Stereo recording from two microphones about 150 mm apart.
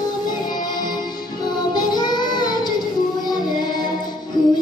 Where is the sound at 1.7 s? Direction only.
30° left (ahead or behind).